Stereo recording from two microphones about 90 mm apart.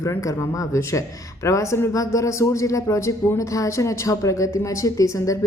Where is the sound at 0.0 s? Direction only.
35° left (ahead or behind).